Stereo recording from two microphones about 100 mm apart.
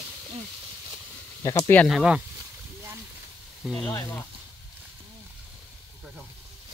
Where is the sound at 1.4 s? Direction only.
30° left (ahead or behind).